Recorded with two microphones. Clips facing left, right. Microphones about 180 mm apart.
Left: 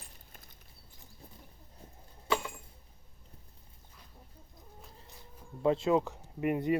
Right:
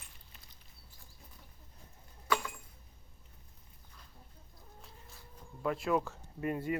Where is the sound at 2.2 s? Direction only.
25° left (ahead or behind).